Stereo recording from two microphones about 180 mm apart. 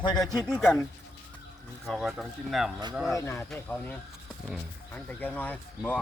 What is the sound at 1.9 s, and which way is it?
Speech, 5° right (ahead or behind).